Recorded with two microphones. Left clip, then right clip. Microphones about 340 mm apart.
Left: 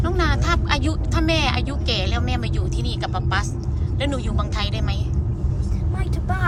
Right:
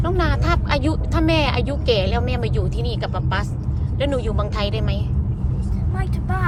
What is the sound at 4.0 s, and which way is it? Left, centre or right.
Speech, centre.